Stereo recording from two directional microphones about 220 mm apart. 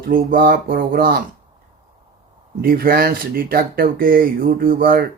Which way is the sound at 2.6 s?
40° right (ahead or behind).